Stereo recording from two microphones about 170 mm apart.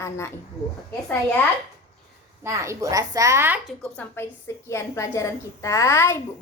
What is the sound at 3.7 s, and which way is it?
Speech, 10° left (ahead or behind).